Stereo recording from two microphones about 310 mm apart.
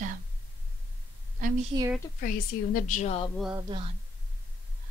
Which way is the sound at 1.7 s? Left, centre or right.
Centre.